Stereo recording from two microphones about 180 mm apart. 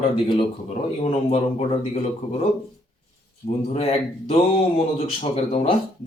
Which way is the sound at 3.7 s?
35° left (ahead or behind).